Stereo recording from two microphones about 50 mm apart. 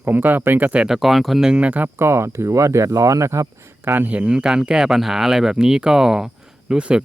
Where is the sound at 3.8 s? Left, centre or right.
Right.